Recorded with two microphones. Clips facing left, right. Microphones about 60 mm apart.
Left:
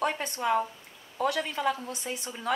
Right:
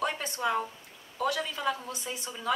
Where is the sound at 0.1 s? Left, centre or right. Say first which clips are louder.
Left 2 dB; centre.